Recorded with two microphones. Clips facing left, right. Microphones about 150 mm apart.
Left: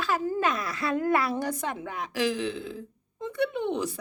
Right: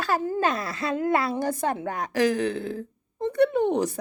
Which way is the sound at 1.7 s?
40° right (ahead or behind).